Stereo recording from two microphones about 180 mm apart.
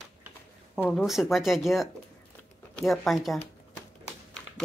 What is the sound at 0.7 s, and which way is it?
Speech, 5° left (ahead or behind).